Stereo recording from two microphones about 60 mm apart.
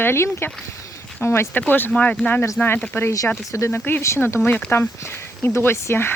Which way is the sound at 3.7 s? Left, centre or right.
Left.